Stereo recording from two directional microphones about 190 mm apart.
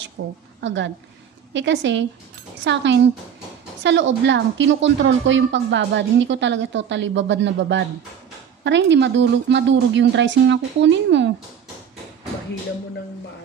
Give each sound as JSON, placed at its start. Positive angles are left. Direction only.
{"t": 0.2, "sound": "a woman's voice", "side_deg": -70}